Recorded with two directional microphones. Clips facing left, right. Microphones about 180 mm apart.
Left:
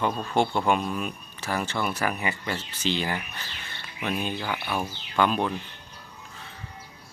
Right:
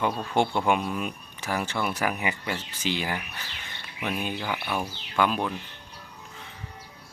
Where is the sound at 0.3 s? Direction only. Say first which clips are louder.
Even; 10° right (ahead or behind).